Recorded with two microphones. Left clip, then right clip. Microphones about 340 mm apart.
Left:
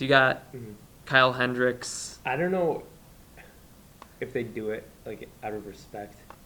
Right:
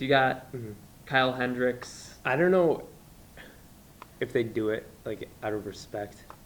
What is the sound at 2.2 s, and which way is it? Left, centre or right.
Speech, right.